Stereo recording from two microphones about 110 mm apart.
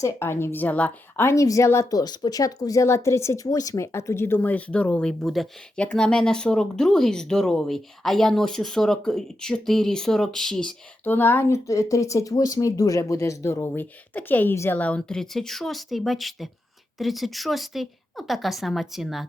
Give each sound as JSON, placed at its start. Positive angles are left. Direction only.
{"t": 0.0, "sound": "a woman's voice", "side_deg": 20}